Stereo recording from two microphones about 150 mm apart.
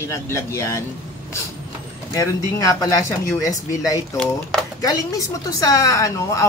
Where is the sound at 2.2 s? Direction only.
20° left (ahead or behind).